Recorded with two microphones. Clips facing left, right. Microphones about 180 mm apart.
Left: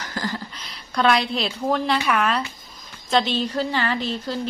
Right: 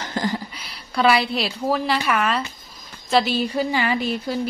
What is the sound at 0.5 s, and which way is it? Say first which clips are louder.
A woman's voice: right 1 dB; 5° right (ahead or behind).